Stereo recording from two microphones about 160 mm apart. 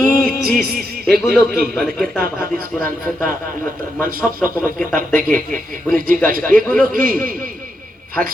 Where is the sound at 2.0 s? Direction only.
65° right (ahead or behind).